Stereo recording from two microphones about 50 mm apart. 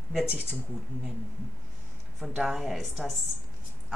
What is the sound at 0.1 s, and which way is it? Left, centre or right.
Speech, centre.